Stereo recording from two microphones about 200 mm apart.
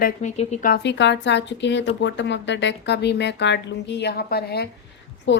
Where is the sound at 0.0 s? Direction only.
35° left (ahead or behind).